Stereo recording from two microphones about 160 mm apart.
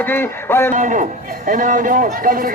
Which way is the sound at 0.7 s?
50° right (ahead or behind).